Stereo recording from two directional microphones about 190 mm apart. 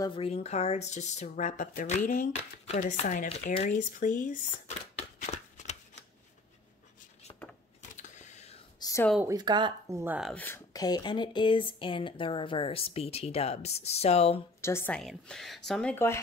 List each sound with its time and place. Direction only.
0.0 s speech: 30° left (ahead or behind)
4.9 s shuffling cards: 35° left (ahead or behind)
8.0 s a sound: 40° left (ahead or behind)
8.7 s a sound: 20° left (ahead or behind)
9.2 s speech: 20° right (ahead or behind)
10.3 s speech: 10° left (ahead or behind); by 14.4 s 35° left (ahead or behind)
14.6 s a woman's voice: 15° left (ahead or behind)